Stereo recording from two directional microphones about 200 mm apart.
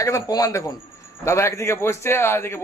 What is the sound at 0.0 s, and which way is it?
A man's voice, 15° left (ahead or behind).